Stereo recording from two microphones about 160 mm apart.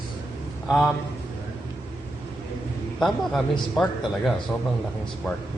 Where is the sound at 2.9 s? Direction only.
Centre (ahead or behind).